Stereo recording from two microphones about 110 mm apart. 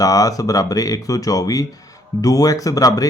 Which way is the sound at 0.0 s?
35° left (ahead or behind).